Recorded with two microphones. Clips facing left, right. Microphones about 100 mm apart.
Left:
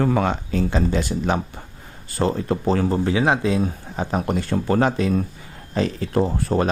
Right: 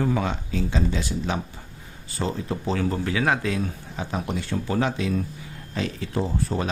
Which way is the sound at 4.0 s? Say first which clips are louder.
Left 6 dB; 45° left (ahead or behind).